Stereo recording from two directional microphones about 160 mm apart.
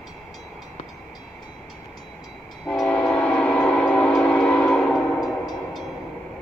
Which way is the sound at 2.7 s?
10° left (ahead or behind).